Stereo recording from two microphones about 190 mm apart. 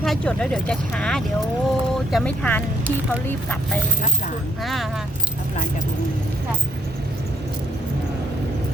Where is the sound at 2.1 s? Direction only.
5° left (ahead or behind).